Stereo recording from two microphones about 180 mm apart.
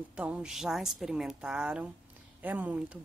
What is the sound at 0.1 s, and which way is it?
Speech, 5° right (ahead or behind).